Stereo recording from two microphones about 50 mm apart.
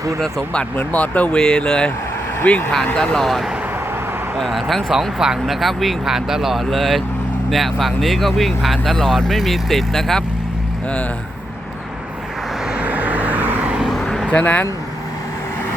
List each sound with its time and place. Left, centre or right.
0.8 s speech: left
1.4 s speech: centre
2.5 s speech: left
4.4 s speech: centre
4.9 s speech: centre
12.7 s vehicle: right
13.8 s vehicle: centre
14.3 s speech: left